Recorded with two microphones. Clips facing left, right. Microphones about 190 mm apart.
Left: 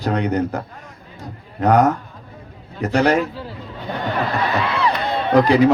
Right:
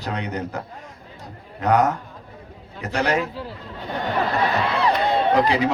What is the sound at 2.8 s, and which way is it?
Speech, 45° left (ahead or behind).